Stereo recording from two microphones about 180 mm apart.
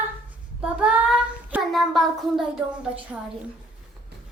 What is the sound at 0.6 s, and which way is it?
Child singing, 5° right (ahead or behind).